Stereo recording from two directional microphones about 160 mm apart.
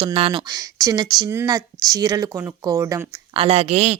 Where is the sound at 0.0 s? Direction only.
35° right (ahead or behind).